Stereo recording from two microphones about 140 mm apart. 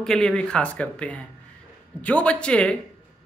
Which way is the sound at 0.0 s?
5° left (ahead or behind).